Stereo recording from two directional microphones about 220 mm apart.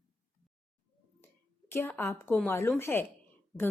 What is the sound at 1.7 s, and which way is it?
A woman's voice, 10° left (ahead or behind).